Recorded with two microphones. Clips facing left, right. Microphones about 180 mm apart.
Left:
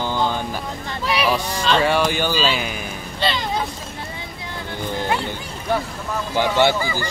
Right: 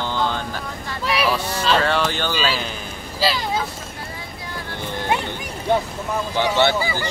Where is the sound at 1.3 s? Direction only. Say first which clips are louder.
Left 1 dB; 15° left (ahead or behind).